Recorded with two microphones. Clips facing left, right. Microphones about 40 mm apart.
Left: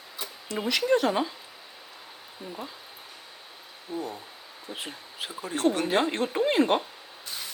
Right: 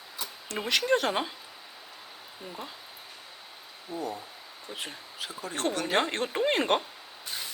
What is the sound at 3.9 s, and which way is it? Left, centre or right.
Speech, left.